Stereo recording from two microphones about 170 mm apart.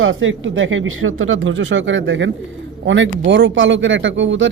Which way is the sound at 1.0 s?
90° right.